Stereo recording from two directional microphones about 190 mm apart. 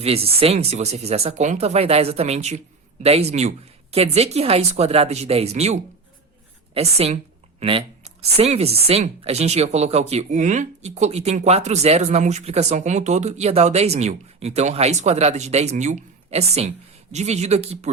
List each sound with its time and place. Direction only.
0.0 s speech: 30° right (ahead or behind)